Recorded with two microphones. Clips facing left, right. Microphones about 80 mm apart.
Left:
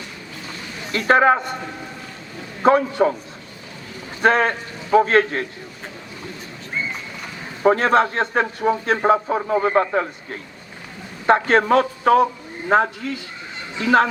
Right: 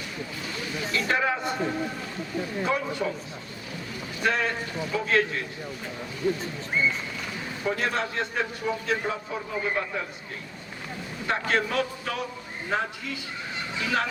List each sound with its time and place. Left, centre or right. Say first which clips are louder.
0.9 s a man's voice: left 11 dB; left
2.6 s a man's voice: left 15 dB; left
4.2 s a man's voice: left 9 dB; left
7.6 s a man's voice: left 12 dB; left
11.3 s a man's voice: left 11 dB; left